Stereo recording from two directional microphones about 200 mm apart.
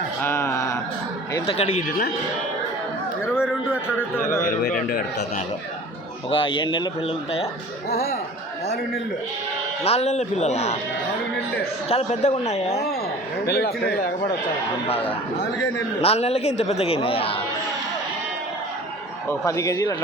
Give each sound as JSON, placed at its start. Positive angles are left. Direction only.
{"t": 0.2, "sound": "a sound", "side_deg": 10}
{"t": 1.3, "sound": "speech", "side_deg": 30}
{"t": 3.3, "sound": "speech", "side_deg": -5}
{"t": 6.3, "sound": "speech", "side_deg": 25}
{"t": 9.8, "sound": "a man's voice", "side_deg": 30}
{"t": 11.9, "sound": "a man's voice", "side_deg": 30}
{"t": 13.5, "sound": "speech", "side_deg": 50}
{"t": 14.8, "sound": "a man's voice", "side_deg": 30}
{"t": 19.3, "sound": "a man's voice", "side_deg": 15}